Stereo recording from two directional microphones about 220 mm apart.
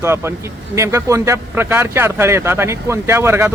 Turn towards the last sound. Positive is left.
turn(degrees=-10)  # may be behind; listen again after turning